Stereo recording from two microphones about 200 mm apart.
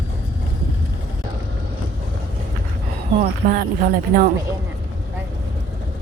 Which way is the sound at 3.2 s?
45° right (ahead or behind).